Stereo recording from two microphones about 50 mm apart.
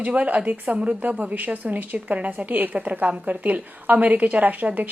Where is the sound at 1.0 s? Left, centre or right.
Right.